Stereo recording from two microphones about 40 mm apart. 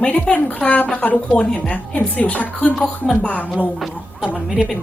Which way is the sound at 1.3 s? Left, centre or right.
Left.